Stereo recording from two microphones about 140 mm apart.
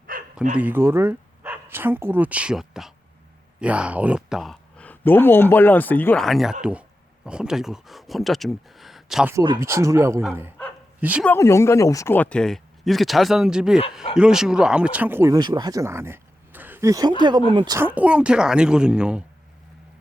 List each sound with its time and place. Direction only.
0.1 s bow-wow: 90° right
0.5 s a woman's voice: 15° right (ahead or behind)
4.8 s speech: 15° left (ahead or behind)
6.2 s speech: centre (ahead or behind)
9.6 s speech: 20° right (ahead or behind)
11.3 s a woman's voice: 20° left (ahead or behind); by 15.4 s 15° right (ahead or behind)
15.4 s speech: 30° right (ahead or behind)
17.7 s a woman's voice: 10° right (ahead or behind)